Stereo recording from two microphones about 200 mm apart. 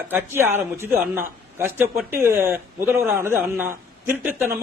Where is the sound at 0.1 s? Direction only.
10° right (ahead or behind).